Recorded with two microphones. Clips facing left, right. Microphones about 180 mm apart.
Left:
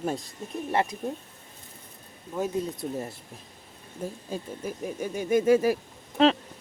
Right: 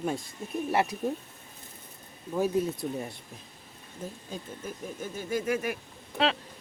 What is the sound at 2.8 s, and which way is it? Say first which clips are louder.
Speech: left 1 dB; centre (ahead or behind).